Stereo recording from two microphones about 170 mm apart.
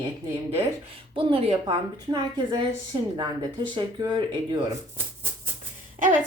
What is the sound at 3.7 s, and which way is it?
Speech, 25° right (ahead or behind).